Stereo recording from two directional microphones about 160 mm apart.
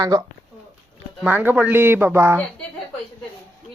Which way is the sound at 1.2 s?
10° right (ahead or behind).